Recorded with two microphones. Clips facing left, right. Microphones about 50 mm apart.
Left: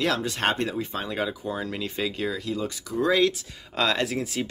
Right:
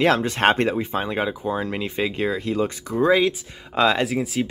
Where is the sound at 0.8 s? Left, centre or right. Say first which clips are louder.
Right 5 dB; right.